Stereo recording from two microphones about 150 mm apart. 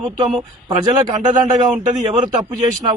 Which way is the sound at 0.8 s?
30° right (ahead or behind).